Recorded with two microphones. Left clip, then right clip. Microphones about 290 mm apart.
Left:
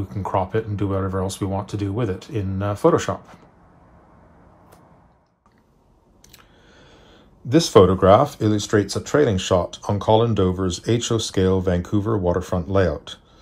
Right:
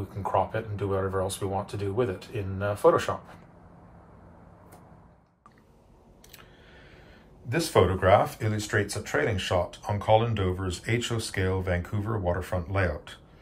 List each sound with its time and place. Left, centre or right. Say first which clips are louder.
0.1 s speech: left 4 dB; left
7.4 s speech: left 10 dB; left